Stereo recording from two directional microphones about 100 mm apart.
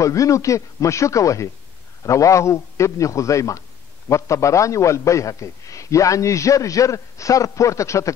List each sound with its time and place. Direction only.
0.0 s a man's voice: 30° left (ahead or behind)